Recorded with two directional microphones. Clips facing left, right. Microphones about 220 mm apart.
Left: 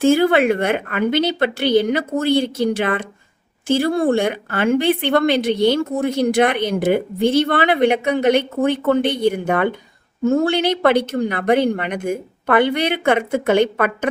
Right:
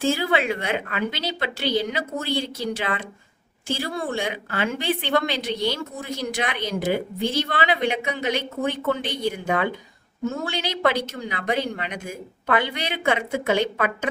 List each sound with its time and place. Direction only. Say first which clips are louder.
0.0 s a woman's voice: left 9 dB; 55° left (ahead or behind)